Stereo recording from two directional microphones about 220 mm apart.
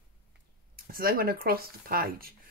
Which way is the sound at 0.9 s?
40° right (ahead or behind).